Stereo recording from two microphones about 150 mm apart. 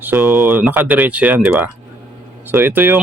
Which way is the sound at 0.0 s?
15° right (ahead or behind).